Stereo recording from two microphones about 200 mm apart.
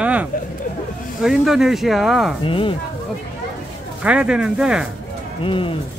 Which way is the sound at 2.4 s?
25° left (ahead or behind).